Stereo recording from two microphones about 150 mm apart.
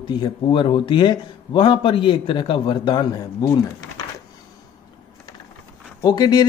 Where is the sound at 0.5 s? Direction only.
35° left (ahead or behind).